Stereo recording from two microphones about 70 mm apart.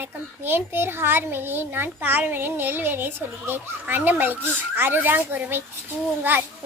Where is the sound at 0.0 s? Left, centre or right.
Right.